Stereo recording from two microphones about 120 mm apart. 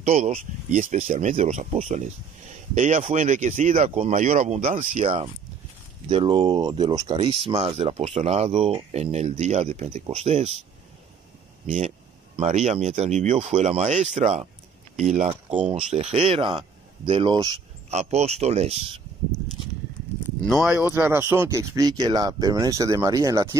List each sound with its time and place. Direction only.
0.0 s speech: 80° right
2.7 s speech: 90° right
5.0 s speech: 45° right (ahead or behind)
6.3 s speech: 35° right (ahead or behind)
7.2 s speech: 55° right (ahead or behind)
7.7 s speech: 70° right (ahead or behind)
8.1 s speech: 60° right (ahead or behind)
11.6 s speech: 75° right (ahead or behind)
12.4 s speech: 65° right (ahead or behind); by 15.6 s 85° right
15.7 s speech: 60° right (ahead or behind); by 17.4 s 45° right (ahead or behind)
17.8 s speech: 65° right (ahead or behind)
20.4 s speech: centre (ahead or behind)
20.8 s speech: 20° right (ahead or behind)